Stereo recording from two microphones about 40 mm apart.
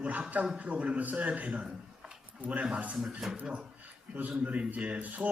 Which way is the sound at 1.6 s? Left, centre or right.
Right.